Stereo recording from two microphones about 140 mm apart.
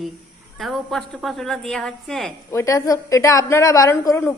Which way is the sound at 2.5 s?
20° left (ahead or behind).